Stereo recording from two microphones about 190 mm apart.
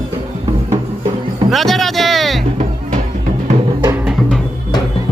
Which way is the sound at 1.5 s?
Centre (ahead or behind).